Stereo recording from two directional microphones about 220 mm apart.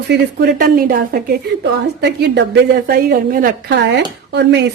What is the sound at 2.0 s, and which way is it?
A woman's voice, 50° right (ahead or behind).